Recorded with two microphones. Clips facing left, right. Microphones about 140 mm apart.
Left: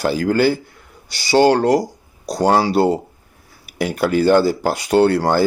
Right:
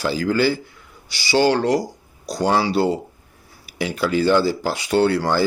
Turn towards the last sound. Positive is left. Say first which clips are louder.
# left 3 dB
turn(degrees=50)  # may be behind; listen again after turning